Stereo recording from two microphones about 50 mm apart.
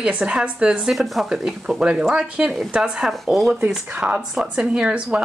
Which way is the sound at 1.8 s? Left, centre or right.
Right.